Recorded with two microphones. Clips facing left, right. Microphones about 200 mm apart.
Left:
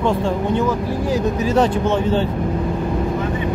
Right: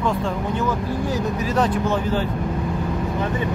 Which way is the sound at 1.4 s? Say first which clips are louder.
Left 4 dB; 25° left (ahead or behind).